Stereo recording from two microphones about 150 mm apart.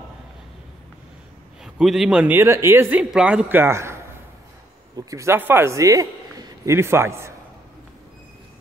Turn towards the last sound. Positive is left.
turn(degrees=-15)  # may be behind; listen again after turning